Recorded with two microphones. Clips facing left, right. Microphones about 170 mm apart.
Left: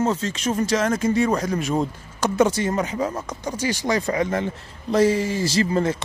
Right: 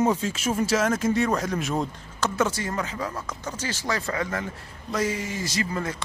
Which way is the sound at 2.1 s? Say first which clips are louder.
Left 6 dB; 15° left (ahead or behind).